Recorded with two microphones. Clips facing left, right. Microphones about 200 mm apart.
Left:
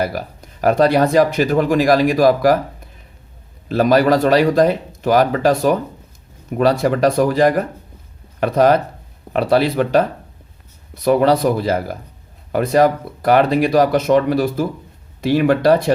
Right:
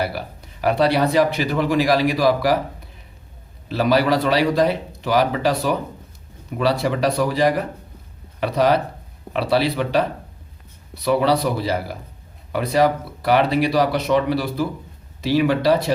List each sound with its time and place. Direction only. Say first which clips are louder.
0.6 s speech: left 4 dB; 45° left (ahead or behind)
3.7 s speech: left 4 dB; 50° left (ahead or behind)